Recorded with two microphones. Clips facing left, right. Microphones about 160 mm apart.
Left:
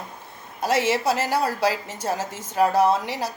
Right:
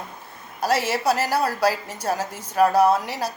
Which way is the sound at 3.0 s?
15° left (ahead or behind).